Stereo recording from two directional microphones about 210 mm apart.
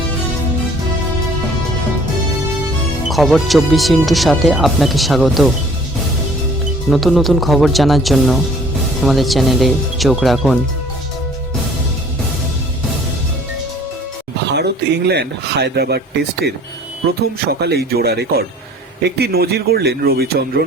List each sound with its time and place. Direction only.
3.1 s speech: centre (ahead or behind)
6.9 s speech: centre (ahead or behind)
14.5 s a man's voice: 50° right (ahead or behind)